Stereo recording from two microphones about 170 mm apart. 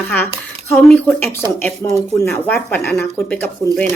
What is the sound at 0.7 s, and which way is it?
Speech, 10° left (ahead or behind).